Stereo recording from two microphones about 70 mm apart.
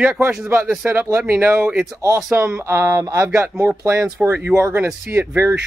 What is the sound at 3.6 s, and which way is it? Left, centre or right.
Speech, right.